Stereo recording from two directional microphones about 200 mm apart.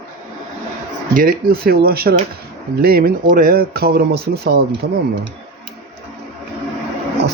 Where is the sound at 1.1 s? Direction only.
45° right (ahead or behind).